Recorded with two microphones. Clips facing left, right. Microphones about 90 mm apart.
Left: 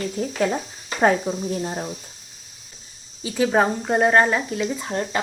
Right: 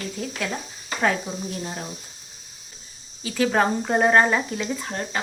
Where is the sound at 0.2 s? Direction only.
35° left (ahead or behind).